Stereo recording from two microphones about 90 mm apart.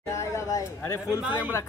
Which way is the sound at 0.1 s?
35° left (ahead or behind).